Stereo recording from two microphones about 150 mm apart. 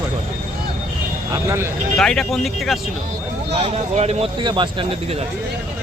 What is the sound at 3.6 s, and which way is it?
Speech, 40° right (ahead or behind).